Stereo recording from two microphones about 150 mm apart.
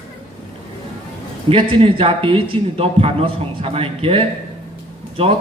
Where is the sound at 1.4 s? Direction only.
40° right (ahead or behind).